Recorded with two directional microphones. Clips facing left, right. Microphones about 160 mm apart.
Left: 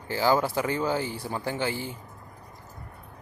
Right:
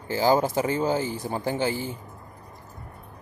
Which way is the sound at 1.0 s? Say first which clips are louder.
Right 3 dB; 45° right (ahead or behind).